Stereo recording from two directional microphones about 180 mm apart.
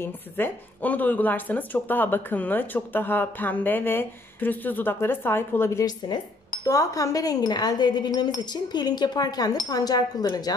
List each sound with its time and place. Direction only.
0.0 s speech: 10° left (ahead or behind)